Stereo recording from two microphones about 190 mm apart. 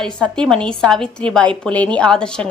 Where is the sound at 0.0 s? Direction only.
5° left (ahead or behind).